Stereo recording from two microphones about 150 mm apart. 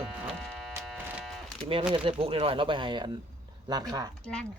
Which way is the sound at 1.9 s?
35° right (ahead or behind).